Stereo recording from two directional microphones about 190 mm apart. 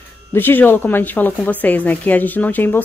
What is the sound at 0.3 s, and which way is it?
Speech, 10° left (ahead or behind).